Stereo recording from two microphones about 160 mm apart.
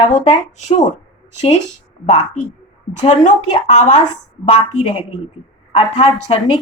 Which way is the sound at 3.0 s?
45° left (ahead or behind).